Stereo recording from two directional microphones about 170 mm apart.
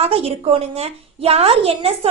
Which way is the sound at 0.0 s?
35° right (ahead or behind).